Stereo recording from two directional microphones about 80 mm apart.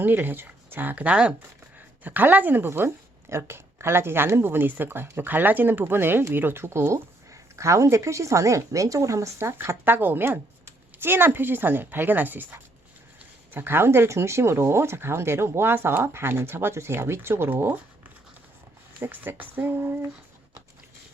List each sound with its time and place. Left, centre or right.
0.0 s speech: right
18.9 s speech: right